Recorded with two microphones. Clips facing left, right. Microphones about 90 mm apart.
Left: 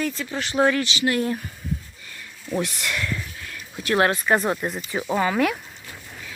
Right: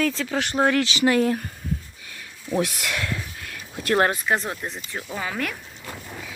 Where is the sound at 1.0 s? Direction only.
80° right.